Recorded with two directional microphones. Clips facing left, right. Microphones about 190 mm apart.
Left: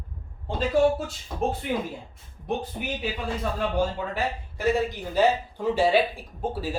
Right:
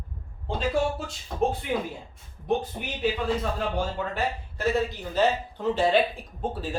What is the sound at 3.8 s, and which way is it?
Speech, 10° left (ahead or behind).